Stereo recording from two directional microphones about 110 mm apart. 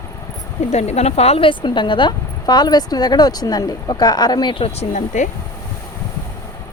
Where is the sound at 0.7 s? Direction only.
80° left.